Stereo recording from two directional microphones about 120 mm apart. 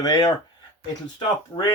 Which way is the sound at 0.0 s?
30° left (ahead or behind).